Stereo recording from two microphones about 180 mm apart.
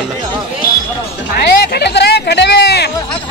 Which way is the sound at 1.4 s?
65° left (ahead or behind).